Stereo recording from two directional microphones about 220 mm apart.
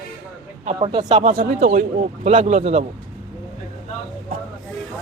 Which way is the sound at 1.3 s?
40° right (ahead or behind).